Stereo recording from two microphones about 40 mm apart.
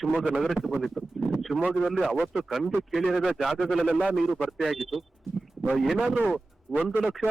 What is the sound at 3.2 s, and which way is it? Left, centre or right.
Speech, centre.